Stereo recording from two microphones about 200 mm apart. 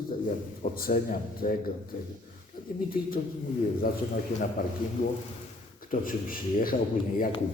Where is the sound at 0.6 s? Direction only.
45° left (ahead or behind).